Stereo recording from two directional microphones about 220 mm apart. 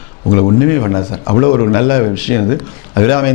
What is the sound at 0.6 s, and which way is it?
A man's voice, 15° left (ahead or behind).